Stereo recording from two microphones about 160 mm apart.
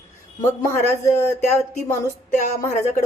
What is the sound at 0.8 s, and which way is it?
A woman's voice, 15° left (ahead or behind).